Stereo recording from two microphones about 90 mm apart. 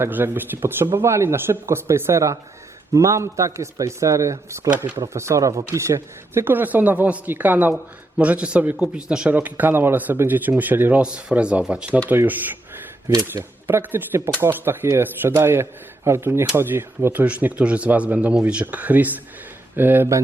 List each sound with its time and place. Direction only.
0.0 s a man's voice: 20° right (ahead or behind)
17.2 s speech: 15° right (ahead or behind)